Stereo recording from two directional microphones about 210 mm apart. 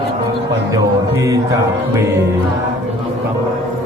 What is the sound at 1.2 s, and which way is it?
Speech, 15° right (ahead or behind).